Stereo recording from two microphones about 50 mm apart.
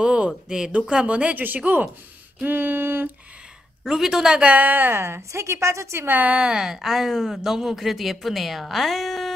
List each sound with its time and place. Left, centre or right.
0.0 s a sound: centre
0.5 s speech: centre
2.4 s a sound: right
3.8 s speech: centre
4.3 s speech: right
4.9 s a woman's voice: right
6.0 s speech: right
6.3 s speech: centre